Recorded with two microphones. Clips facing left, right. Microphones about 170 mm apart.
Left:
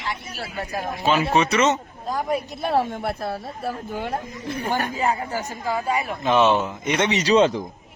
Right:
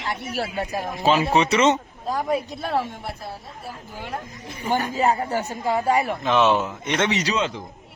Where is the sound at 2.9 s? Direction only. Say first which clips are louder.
Left 7 dB; 60° left (ahead or behind).